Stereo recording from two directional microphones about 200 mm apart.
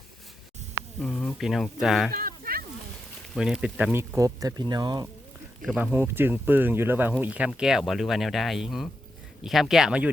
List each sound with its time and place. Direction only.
0.9 s speech: 5° left (ahead or behind)
2.1 s a sound: 45° right (ahead or behind)
3.3 s speech: centre (ahead or behind); by 5.0 s 20° right (ahead or behind)
5.6 s speech: 5° right (ahead or behind)